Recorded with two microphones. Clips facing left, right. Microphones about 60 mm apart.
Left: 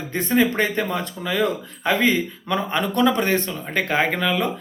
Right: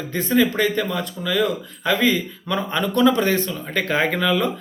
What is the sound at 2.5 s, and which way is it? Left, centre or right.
Speech, centre.